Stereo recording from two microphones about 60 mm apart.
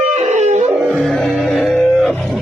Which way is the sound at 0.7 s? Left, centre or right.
Right.